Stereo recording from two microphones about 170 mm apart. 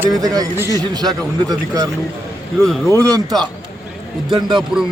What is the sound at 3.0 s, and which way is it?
Speech, 20° right (ahead or behind).